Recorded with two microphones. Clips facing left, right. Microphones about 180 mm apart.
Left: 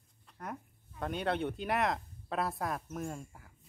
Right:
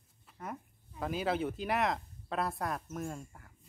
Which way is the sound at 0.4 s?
Centre (ahead or behind).